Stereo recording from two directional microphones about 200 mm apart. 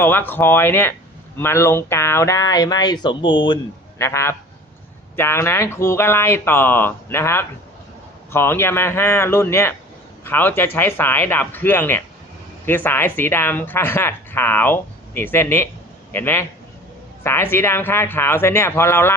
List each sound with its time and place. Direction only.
0.0 s speech: 10° left (ahead or behind)